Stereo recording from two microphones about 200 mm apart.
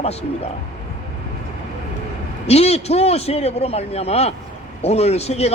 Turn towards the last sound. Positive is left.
turn(degrees=30)  # may be behind; listen again after turning